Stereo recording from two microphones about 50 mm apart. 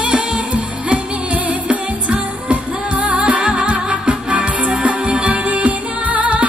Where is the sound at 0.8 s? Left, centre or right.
Right.